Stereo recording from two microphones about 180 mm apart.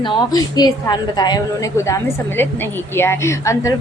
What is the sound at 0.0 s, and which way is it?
A woman's voice, 20° left (ahead or behind).